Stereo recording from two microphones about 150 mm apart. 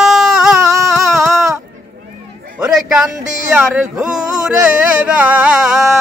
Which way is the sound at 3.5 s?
10° right (ahead or behind).